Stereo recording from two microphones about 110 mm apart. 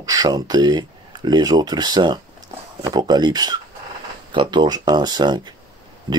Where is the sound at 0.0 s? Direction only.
35° right (ahead or behind).